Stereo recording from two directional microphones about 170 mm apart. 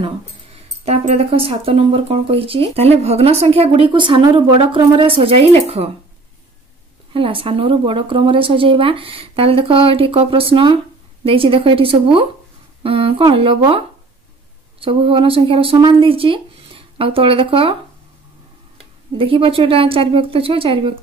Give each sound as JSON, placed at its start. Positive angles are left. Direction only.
{"t": 0.8, "sound": "speech", "side_deg": -35}
{"t": 7.1, "sound": "speech", "side_deg": -30}
{"t": 19.1, "sound": "speech", "side_deg": -30}